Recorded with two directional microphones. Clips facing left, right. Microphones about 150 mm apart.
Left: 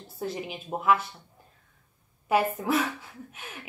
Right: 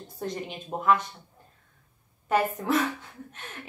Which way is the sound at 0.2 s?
5° left (ahead or behind).